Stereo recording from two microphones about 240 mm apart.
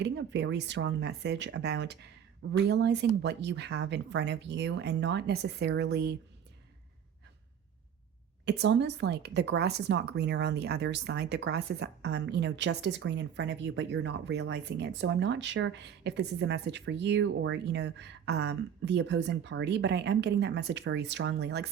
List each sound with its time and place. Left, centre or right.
0.0 s speech: right
8.4 s speech: right